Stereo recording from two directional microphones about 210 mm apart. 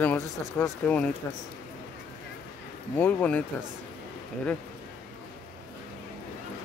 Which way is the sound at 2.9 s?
10° left (ahead or behind).